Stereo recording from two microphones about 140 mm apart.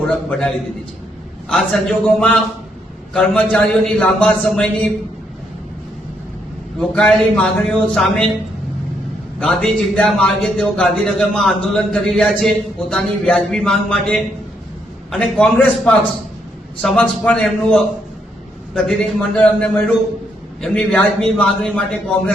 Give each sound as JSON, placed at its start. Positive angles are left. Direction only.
{"t": 0.1, "sound": "a man's voice", "side_deg": 5}
{"t": 6.7, "sound": "a man's voice", "side_deg": 5}
{"t": 9.4, "sound": "a man's voice", "side_deg": 5}